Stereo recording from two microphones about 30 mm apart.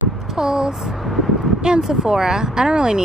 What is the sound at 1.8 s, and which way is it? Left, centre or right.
Speech, centre.